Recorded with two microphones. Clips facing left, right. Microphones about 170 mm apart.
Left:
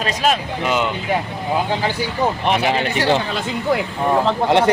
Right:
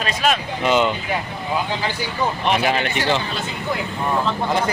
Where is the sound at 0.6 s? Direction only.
5° left (ahead or behind).